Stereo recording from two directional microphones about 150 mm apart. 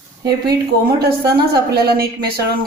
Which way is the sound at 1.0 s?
90° right.